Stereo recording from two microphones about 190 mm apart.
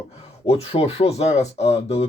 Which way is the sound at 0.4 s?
30° left (ahead or behind).